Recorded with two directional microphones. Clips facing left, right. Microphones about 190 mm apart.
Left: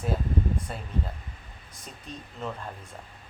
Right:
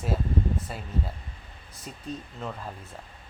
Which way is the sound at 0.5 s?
5° right (ahead or behind).